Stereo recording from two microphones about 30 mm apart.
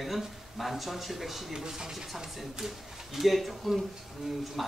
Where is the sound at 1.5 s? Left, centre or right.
Centre.